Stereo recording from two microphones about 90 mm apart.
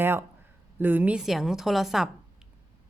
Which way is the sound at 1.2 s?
5° right (ahead or behind).